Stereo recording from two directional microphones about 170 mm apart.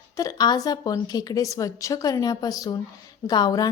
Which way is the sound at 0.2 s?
25° left (ahead or behind).